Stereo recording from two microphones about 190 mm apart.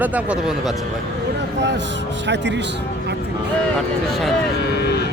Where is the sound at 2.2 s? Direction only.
65° right (ahead or behind).